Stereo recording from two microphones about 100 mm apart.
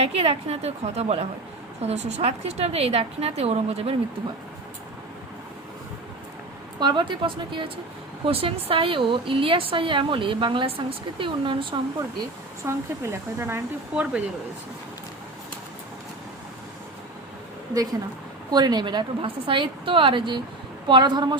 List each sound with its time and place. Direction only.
0.0 s a woman's voice: 90° right
6.7 s a woman's voice: 50° right (ahead or behind)
8.3 s a woman's voice: 75° right (ahead or behind); by 11.8 s 55° right (ahead or behind)
12.6 s speech: 25° right (ahead or behind)
13.9 s speech: 10° right (ahead or behind)
18.5 s a woman's voice: 45° right (ahead or behind)